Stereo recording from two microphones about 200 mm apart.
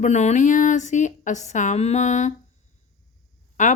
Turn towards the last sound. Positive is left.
turn(degrees=40)  # may be behind; listen again after turning